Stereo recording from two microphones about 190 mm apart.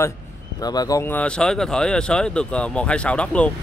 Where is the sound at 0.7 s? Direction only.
20° left (ahead or behind).